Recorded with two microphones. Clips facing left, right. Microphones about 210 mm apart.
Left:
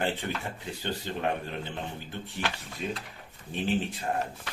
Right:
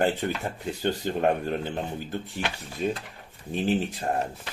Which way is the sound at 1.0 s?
45° right (ahead or behind).